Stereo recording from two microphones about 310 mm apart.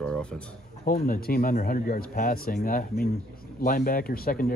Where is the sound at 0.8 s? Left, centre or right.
Left.